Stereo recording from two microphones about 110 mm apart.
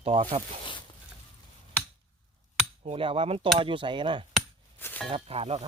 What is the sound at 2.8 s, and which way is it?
Speech, 60° right (ahead or behind).